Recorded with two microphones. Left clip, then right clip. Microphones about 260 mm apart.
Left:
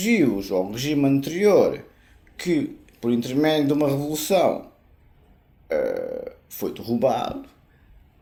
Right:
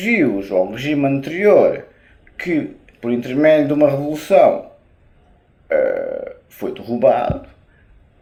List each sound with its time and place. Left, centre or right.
0.0 s speech: left
5.6 s speech: left